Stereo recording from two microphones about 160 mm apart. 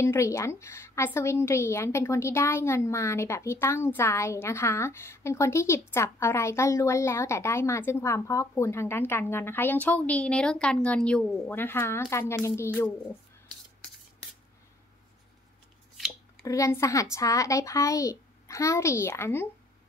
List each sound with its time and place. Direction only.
0.0 s a woman's voice: 15° left (ahead or behind)
16.4 s a child's voice: 20° left (ahead or behind)